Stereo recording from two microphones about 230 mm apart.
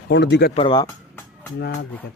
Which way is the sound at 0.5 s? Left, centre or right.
Left.